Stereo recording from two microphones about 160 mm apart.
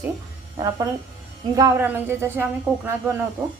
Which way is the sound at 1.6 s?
20° right (ahead or behind).